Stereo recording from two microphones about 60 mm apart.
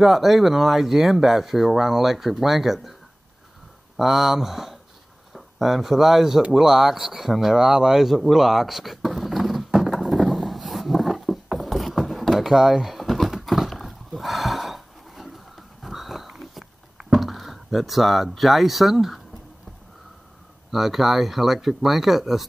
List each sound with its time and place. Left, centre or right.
0.0 s speech: centre
3.9 s speech: centre
6.5 s a sound: centre
20.7 s speech: centre